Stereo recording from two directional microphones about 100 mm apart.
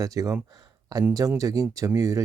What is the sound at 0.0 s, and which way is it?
Speech, 35° right (ahead or behind).